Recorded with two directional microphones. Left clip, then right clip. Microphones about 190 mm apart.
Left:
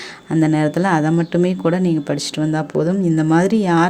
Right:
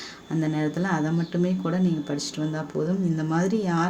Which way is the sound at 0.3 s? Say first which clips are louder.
Left 10 dB; 40° left (ahead or behind).